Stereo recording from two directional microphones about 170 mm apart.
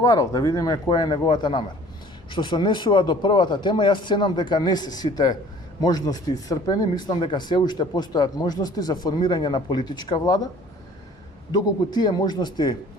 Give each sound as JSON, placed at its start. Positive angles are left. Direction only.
{"t": 0.0, "sound": "speech", "side_deg": 20}
{"t": 11.5, "sound": "speech", "side_deg": 25}